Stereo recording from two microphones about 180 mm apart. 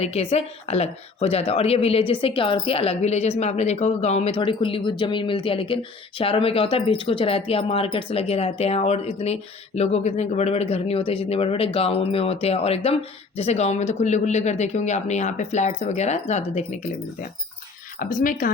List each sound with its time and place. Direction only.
0.0 s speech: 35° left (ahead or behind)
18.0 s speech: 50° left (ahead or behind)